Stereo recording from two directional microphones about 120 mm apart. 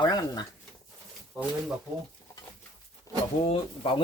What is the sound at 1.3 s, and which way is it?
Speech, 10° right (ahead or behind).